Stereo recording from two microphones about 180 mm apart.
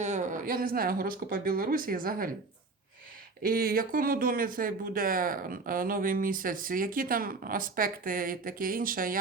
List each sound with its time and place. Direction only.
0.0 s speech: 40° right (ahead or behind)
3.4 s speech: 55° right (ahead or behind)